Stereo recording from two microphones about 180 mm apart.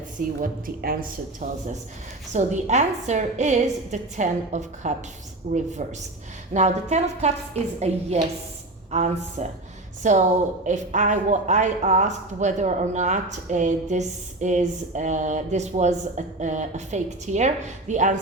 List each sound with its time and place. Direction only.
0.2 s a woman's voice: 50° right (ahead or behind)
1.4 s a woman's voice: 45° right (ahead or behind)